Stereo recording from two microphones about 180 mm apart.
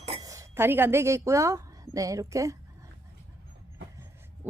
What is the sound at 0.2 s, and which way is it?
A woman's voice, 20° right (ahead or behind).